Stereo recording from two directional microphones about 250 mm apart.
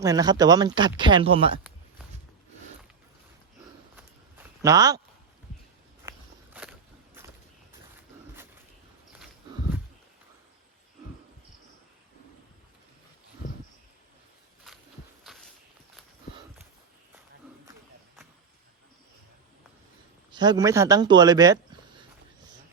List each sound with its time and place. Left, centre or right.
0.0 s speech: centre
4.6 s speech: centre
6.1 s walk: centre
15.2 s walk: centre
20.3 s speech: centre